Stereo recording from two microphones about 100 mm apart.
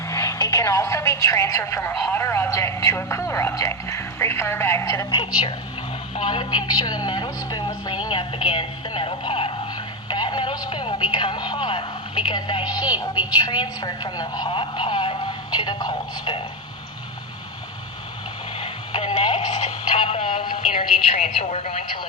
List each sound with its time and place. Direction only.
0.1 s a woman's voice: 30° left (ahead or behind)
6.1 s speech: 55° left (ahead or behind)
8.0 s speech: 55° left (ahead or behind)
18.6 s radio: 65° left (ahead or behind); by 21.8 s 90° left